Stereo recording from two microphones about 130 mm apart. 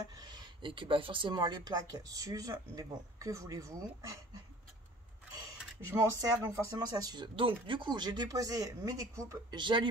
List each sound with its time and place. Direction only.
0.2 s speech: 35° right (ahead or behind)
5.9 s speech: 20° right (ahead or behind)
7.3 s speech: 40° right (ahead or behind)